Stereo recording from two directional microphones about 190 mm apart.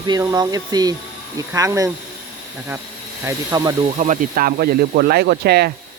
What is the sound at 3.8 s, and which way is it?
Speech, 40° right (ahead or behind).